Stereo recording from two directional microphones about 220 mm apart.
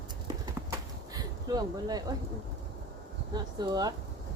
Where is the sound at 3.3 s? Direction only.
20° right (ahead or behind).